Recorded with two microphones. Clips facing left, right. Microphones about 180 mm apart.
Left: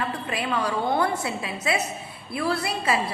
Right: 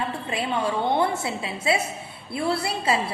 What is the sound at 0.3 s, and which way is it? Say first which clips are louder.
A woman's voice: right 2 dB; 25° right (ahead or behind).